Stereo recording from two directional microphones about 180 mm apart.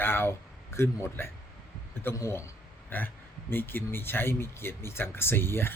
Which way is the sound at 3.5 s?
10° left (ahead or behind).